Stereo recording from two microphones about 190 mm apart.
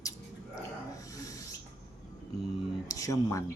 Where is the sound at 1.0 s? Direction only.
20° left (ahead or behind).